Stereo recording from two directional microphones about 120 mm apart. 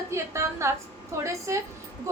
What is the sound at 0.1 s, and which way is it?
A woman's voice, 25° right (ahead or behind).